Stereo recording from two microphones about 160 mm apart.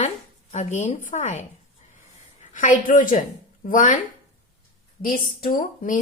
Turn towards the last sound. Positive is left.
turn(degrees=60)  # may be behind; listen again after turning